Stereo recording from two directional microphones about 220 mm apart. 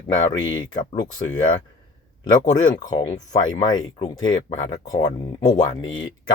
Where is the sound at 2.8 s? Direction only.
30° left (ahead or behind).